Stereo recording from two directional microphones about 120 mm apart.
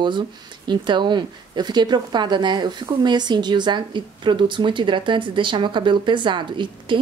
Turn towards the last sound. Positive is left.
turn(degrees=-40)  # may be behind; listen again after turning